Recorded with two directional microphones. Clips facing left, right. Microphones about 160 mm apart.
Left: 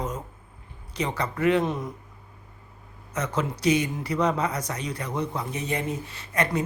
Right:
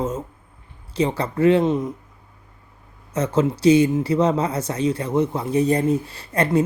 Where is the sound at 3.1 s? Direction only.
30° right (ahead or behind).